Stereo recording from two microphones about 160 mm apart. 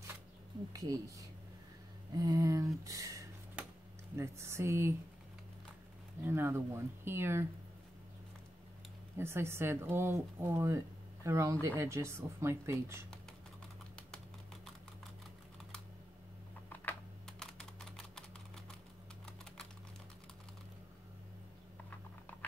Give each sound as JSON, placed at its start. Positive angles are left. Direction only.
{"t": 0.7, "sound": "speech", "side_deg": -20}
{"t": 6.2, "sound": "speech", "side_deg": -15}
{"t": 9.2, "sound": "speech", "side_deg": -15}
{"t": 16.6, "sound": "computer keyboard", "side_deg": 5}